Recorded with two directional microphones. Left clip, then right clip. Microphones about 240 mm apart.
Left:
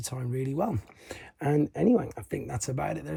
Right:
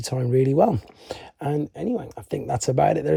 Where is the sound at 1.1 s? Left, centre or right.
Centre.